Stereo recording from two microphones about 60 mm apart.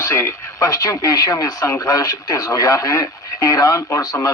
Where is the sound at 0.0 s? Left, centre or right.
Left.